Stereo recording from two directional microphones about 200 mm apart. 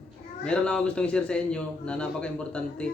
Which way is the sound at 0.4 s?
5° left (ahead or behind).